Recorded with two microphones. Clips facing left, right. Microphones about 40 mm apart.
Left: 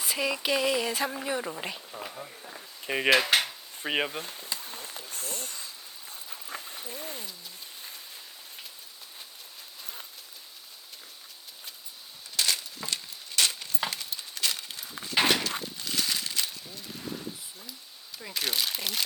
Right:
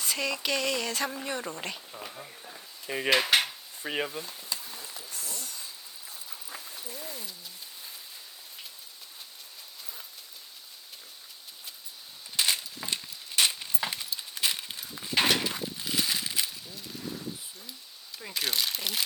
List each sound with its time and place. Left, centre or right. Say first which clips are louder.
0.0 s speech: left 2 dB; centre
2.8 s dishes: left 4 dB; left
3.1 s speech: left 1 dB; centre
3.8 s speech: left 3 dB; left
4.2 s speech: left 1 dB; left
6.5 s a sound: left 4 dB; left
6.8 s speech: left 2 dB; left
12.4 s a sound: even; centre
12.9 s keys jangling: right 1 dB; centre
14.3 s walk: right 1 dB; centre
15.1 s a sound: left 1 dB; centre
15.6 s a sound: right 1 dB; centre
18.2 s speech: even; centre